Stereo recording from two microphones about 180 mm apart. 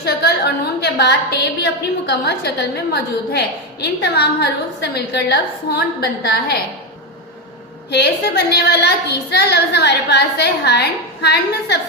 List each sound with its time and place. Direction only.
0.0 s a woman's voice: 65° left (ahead or behind)
7.9 s a woman's voice: 65° left (ahead or behind)